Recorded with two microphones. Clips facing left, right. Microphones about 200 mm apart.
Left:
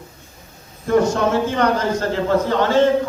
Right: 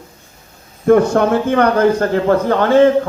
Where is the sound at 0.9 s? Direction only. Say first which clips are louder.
Right 5 dB; 55° right (ahead or behind).